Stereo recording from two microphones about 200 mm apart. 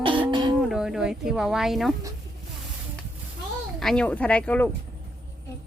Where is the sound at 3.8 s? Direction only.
5° left (ahead or behind).